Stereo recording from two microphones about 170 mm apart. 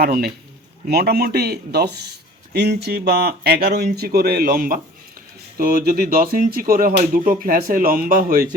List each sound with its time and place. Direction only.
0.0 s speech: 65° right (ahead or behind)